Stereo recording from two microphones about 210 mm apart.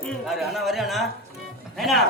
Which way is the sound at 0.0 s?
Centre (ahead or behind).